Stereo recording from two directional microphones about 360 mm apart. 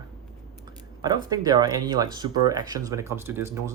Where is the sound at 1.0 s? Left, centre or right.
Centre.